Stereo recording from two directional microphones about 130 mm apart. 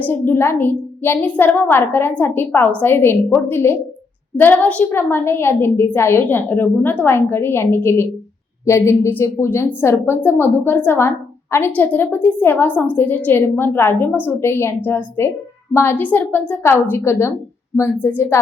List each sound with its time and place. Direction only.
0.0 s a woman's voice: 15° left (ahead or behind)